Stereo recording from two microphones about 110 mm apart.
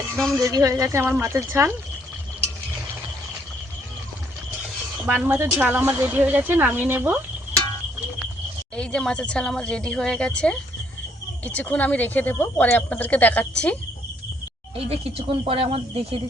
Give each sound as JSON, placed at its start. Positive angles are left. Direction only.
{"t": 0.3, "sound": "speech", "side_deg": -30}
{"t": 5.1, "sound": "a woman's voice", "side_deg": -15}
{"t": 8.7, "sound": "speech", "side_deg": 10}
{"t": 14.8, "sound": "speech", "side_deg": -60}